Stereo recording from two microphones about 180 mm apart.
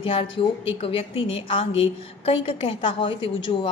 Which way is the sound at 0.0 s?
30° left (ahead or behind).